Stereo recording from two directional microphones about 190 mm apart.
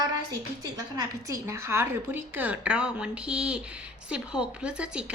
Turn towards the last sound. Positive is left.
turn(degrees=-5)  # may be behind; listen again after turning